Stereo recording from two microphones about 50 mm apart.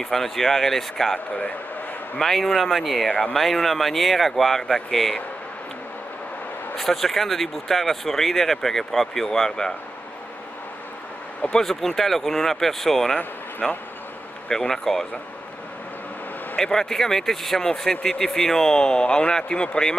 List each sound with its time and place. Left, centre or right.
0.0 s speech: centre
6.8 s speech: centre
11.5 s speech: centre
16.5 s speech: centre